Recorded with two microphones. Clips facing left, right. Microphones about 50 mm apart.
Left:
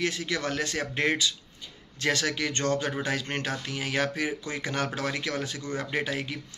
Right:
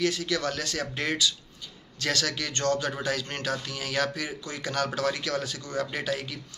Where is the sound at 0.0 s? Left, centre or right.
Left.